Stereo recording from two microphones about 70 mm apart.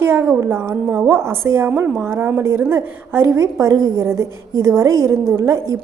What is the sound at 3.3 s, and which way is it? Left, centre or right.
A woman's voice, right.